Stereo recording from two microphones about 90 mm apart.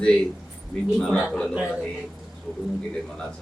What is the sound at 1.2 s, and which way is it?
Speech, 5° left (ahead or behind).